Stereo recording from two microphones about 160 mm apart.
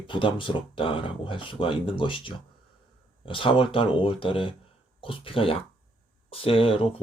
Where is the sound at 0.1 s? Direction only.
30° left (ahead or behind).